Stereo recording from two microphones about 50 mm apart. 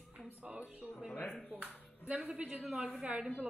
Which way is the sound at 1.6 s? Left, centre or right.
Right.